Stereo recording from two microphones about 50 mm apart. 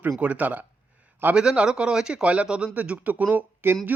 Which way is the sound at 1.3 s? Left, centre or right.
Centre.